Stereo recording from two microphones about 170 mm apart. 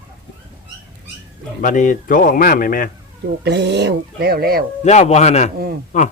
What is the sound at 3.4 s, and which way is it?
Speech, 85° right.